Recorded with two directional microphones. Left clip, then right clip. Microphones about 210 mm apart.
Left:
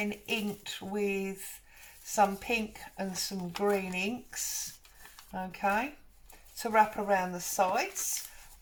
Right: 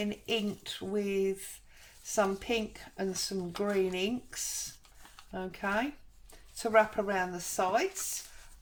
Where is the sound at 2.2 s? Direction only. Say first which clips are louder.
Left 2 dB; 35° right (ahead or behind).